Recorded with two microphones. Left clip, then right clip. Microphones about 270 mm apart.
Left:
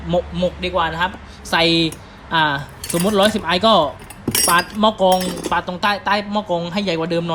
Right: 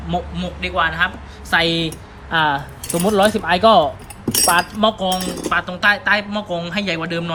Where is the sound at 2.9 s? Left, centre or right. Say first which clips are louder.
Even; right.